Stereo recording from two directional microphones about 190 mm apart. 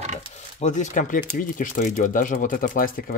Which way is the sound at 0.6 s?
40° left (ahead or behind).